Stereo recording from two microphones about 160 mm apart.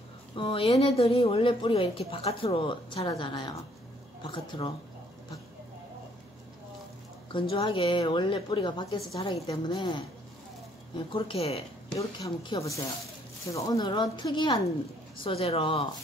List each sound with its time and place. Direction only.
0.4 s a woman's voice: 35° left (ahead or behind)
7.3 s a woman's voice: 35° left (ahead or behind)
11.1 s a woman's voice: 35° left (ahead or behind)
12.0 s a woman's voice: 20° left (ahead or behind)